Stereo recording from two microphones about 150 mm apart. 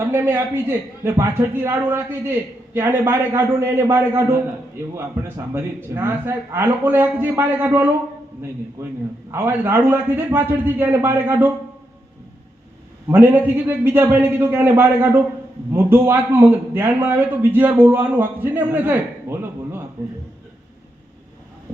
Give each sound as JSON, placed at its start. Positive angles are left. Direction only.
{"t": 0.1, "sound": "a man's voice", "side_deg": -15}
{"t": 5.5, "sound": "a man's voice", "side_deg": -15}
{"t": 13.1, "sound": "a man's voice", "side_deg": -15}